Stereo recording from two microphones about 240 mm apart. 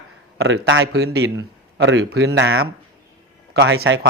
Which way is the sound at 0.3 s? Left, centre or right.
Right.